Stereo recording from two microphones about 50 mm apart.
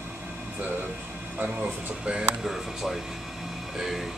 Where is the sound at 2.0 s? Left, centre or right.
Right.